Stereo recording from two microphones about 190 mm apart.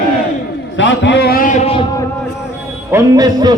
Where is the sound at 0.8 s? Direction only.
70° left (ahead or behind); by 1.8 s 35° left (ahead or behind).